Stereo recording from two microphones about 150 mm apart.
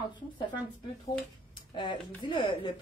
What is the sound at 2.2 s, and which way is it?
Speech, 30° left (ahead or behind).